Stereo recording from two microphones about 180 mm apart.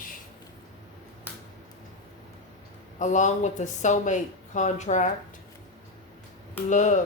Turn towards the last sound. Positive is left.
turn(degrees=45)  # may be behind; listen again after turning